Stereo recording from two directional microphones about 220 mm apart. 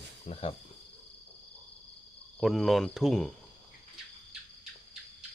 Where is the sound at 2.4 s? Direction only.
Centre (ahead or behind).